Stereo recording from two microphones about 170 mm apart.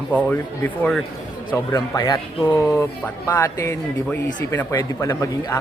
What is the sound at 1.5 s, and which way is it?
Speech, 20° left (ahead or behind).